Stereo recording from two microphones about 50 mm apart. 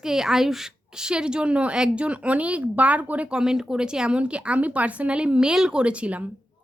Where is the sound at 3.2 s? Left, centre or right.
Centre.